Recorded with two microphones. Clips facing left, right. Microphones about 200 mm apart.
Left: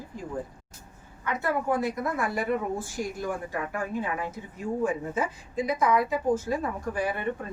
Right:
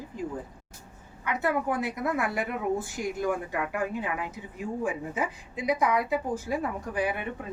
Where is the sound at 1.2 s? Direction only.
15° right (ahead or behind).